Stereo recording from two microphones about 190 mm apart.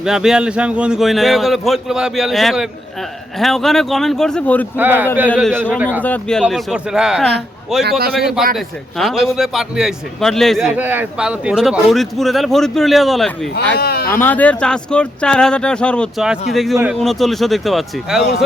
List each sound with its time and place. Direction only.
0.0 s a man's voice: 5° right (ahead or behind)
4.8 s speech: 10° right (ahead or behind)
5.3 s a man's voice: 5° left (ahead or behind)
6.4 s a man's voice: 5° right (ahead or behind)
7.9 s speech: 55° right (ahead or behind)
8.5 s a man's voice: centre (ahead or behind)
13.7 s a sound: 55° left (ahead or behind)
14.1 s a man's voice: 10° left (ahead or behind)